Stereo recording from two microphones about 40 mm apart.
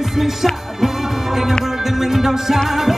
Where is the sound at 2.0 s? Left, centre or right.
Centre.